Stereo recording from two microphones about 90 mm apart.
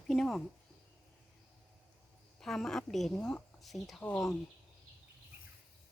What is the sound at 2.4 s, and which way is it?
Speech, 5° left (ahead or behind).